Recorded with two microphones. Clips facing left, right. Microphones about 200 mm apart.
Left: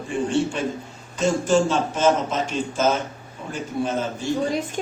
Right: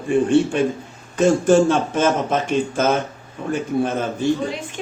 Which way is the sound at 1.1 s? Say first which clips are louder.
Right 5 dB; 55° right (ahead or behind).